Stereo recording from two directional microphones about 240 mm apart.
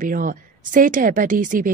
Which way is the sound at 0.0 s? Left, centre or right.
Right.